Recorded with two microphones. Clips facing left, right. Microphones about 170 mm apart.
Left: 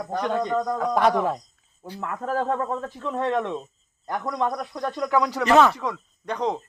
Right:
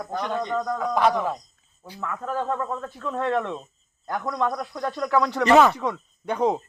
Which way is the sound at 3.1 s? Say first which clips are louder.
Even; 15° left (ahead or behind).